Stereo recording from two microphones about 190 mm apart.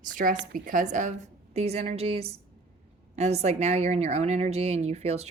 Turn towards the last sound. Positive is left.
turn(degrees=-35)  # may be behind; listen again after turning